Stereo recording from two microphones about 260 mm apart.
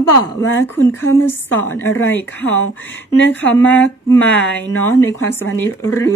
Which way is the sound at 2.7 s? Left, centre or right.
Left.